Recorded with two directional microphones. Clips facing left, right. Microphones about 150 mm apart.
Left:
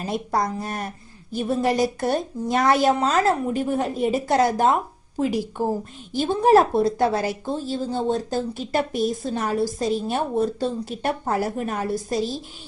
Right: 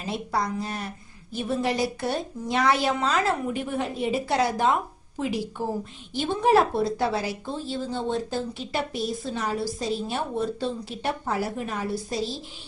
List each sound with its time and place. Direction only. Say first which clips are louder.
0.0 s a woman's voice: left 4 dB; 45° left (ahead or behind)